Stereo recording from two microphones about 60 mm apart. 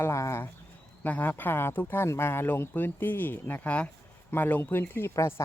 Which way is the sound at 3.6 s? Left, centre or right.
Left.